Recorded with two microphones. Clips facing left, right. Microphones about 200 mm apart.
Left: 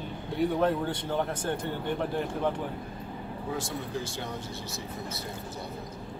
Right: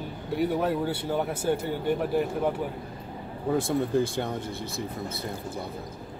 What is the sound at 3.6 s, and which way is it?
Speech, 55° right (ahead or behind).